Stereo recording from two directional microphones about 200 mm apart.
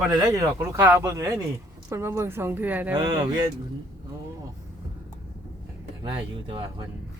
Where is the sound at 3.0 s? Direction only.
20° right (ahead or behind).